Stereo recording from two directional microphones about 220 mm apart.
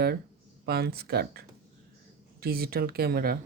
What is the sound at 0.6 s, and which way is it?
Speech, 45° right (ahead or behind).